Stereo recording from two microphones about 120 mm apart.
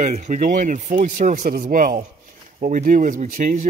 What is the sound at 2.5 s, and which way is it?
Speech, 90° right.